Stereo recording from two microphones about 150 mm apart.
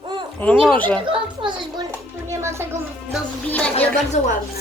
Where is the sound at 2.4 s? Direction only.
15° right (ahead or behind).